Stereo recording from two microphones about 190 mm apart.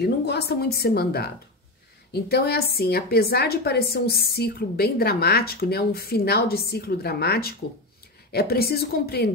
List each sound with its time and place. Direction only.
0.0 s a woman's voice: 60° left (ahead or behind)